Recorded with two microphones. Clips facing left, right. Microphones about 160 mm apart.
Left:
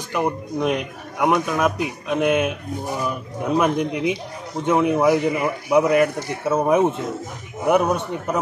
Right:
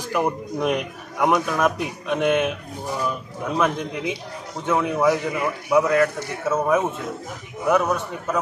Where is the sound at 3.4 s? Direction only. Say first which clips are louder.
Left 4 dB; 15° left (ahead or behind).